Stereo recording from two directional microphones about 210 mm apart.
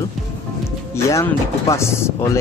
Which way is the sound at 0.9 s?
15° left (ahead or behind).